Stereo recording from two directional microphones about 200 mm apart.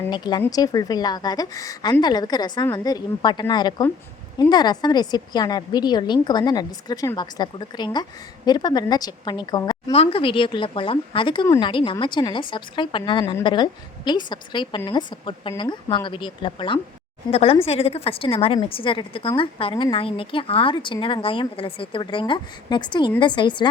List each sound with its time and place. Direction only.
0.1 s speech: 20° left (ahead or behind)
9.9 s speech: 30° left (ahead or behind)